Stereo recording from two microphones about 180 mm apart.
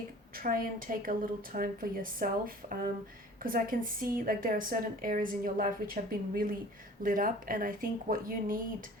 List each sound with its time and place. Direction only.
0.3 s a woman's voice: 50° right (ahead or behind)